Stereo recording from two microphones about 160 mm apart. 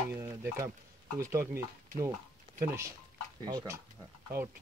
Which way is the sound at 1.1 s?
20° right (ahead or behind).